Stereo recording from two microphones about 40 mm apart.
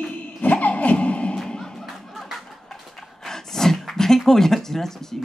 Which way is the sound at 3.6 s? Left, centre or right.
Centre.